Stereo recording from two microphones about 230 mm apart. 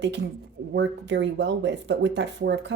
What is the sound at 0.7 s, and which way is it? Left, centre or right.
Speech, right.